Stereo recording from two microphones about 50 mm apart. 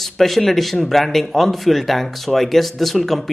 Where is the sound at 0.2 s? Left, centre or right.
Centre.